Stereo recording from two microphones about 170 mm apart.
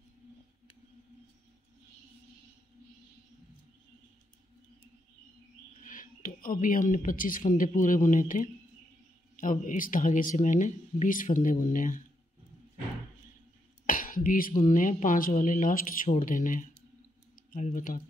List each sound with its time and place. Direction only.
5.9 s speech: 50° left (ahead or behind)
13.8 s speech: 55° left (ahead or behind)